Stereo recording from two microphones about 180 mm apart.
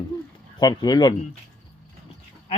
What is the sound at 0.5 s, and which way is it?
Speech, 20° left (ahead or behind).